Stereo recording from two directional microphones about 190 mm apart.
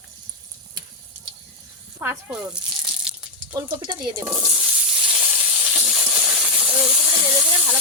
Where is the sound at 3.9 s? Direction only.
20° right (ahead or behind).